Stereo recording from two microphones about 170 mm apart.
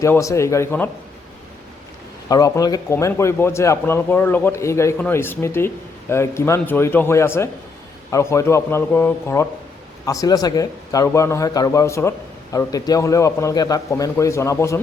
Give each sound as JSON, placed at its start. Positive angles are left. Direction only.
{"t": 0.0, "sound": "a man's voice", "side_deg": 20}
{"t": 2.3, "sound": "a man's voice", "side_deg": 20}